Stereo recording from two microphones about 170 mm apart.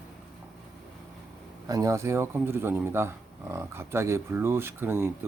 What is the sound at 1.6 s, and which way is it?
Speech, 20° right (ahead or behind).